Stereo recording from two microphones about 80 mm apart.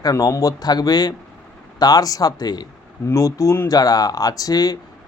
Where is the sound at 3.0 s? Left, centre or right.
Left.